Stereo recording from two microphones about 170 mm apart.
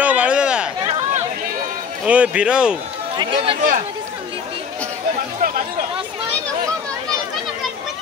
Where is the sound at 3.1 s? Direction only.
30° right (ahead or behind).